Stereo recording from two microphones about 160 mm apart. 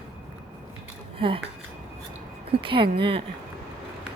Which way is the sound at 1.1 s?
35° right (ahead or behind).